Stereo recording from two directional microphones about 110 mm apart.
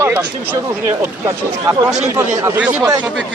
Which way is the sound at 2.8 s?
35° right (ahead or behind).